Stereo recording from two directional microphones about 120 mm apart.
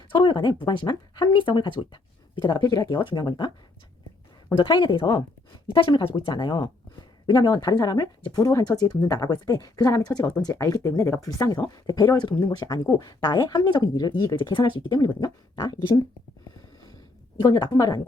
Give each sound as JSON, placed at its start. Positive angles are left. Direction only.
{"t": 0.1, "sound": "speech", "side_deg": 40}
{"t": 4.5, "sound": "speech", "side_deg": 40}
{"t": 17.4, "sound": "speech", "side_deg": 35}